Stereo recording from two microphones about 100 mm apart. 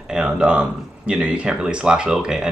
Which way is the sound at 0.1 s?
10° right (ahead or behind).